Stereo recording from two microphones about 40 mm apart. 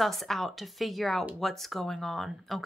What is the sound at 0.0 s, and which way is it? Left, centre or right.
Speech, centre.